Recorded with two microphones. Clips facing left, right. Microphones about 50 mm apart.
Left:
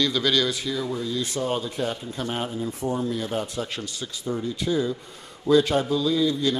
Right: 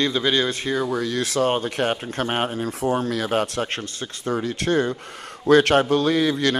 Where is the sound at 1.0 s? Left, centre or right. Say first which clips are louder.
Right 5 dB; right.